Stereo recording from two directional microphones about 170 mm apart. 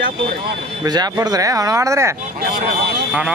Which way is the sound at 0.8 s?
20° right (ahead or behind).